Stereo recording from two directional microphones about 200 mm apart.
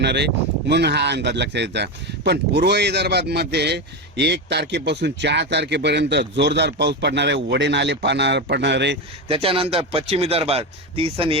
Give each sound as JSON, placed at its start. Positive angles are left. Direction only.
{"t": 0.0, "sound": "speech", "side_deg": -60}
{"t": 9.3, "sound": "speech", "side_deg": -25}